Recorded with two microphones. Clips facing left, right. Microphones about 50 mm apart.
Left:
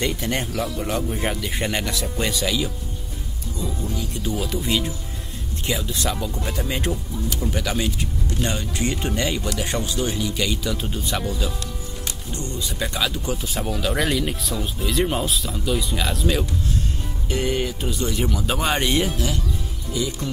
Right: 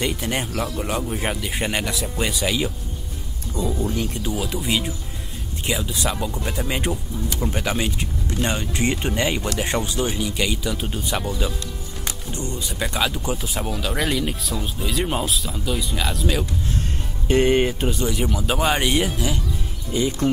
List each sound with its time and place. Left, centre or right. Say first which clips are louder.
0.0 s speech: even; centre
2.4 s speech: right 2 dB; centre
3.5 s speech: right 5 dB; right
4.4 s speech: even; centre
7.3 s speech: right 2 dB; right; by 11.3 s centre
12.4 s speech: even; right
12.7 s speech: right 2 dB; centre
13.4 s speech: left 1 dB; centre
17.3 s speech: right 7 dB; right
18.3 s speech: right 2 dB; centre
19.9 s speech: right 4 dB; right